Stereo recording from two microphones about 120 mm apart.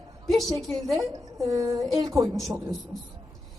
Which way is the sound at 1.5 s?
30° right (ahead or behind).